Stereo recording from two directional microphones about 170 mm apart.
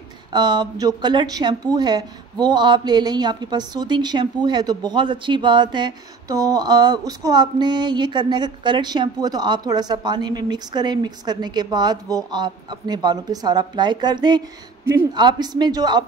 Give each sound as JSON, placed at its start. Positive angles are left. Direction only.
{"t": 0.3, "sound": "a woman's voice", "side_deg": -25}